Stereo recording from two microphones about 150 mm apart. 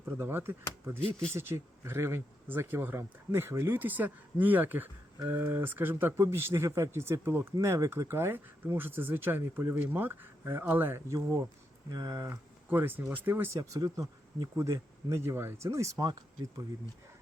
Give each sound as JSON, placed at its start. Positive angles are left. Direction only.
{"t": 0.0, "sound": "speech", "side_deg": -15}
{"t": 13.6, "sound": "speech", "side_deg": -25}